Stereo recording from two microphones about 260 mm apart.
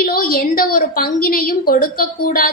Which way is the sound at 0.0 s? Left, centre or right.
Left.